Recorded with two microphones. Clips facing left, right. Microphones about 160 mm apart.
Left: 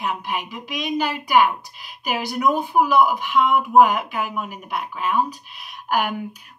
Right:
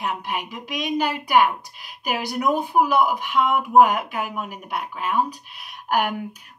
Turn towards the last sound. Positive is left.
turn(degrees=-50)  # may be behind; listen again after turning